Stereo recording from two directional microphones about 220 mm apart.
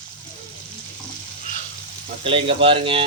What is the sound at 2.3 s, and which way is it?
Speech, 25° right (ahead or behind).